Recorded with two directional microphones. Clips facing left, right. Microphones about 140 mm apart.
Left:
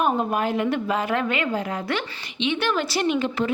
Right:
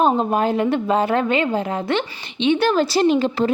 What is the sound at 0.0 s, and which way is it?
A woman's voice, 30° right (ahead or behind).